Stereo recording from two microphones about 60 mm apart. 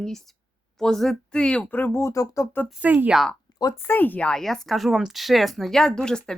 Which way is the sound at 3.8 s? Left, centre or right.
Left.